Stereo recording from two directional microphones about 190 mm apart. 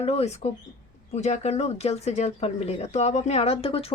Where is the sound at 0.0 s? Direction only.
35° left (ahead or behind).